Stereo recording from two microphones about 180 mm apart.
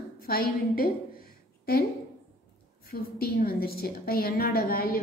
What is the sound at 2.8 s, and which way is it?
A woman's voice, 55° left (ahead or behind).